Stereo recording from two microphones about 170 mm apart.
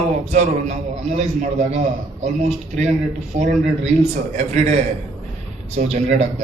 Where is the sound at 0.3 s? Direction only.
40° right (ahead or behind).